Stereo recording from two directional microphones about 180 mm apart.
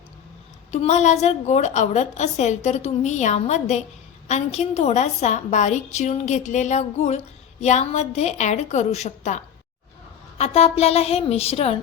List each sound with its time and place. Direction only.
0.7 s a woman's voice: 40° left (ahead or behind)